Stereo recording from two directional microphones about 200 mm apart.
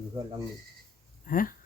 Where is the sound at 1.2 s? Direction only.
45° left (ahead or behind).